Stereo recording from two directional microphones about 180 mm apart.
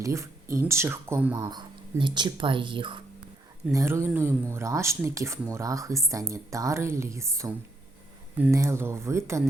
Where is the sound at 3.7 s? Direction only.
15° right (ahead or behind).